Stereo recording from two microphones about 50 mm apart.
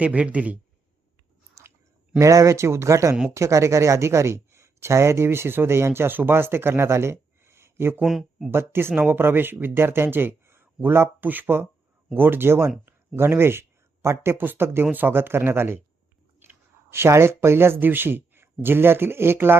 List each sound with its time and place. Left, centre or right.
0.0 s speech: right
1.6 s chewing: right
2.1 s speech: right
8.0 s speech: centre
8.4 s speech: right
11.2 s speech: right
14.3 s speech: right
16.9 s speech: right